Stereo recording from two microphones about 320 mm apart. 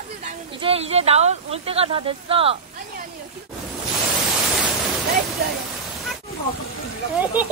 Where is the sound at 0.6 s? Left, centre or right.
Centre.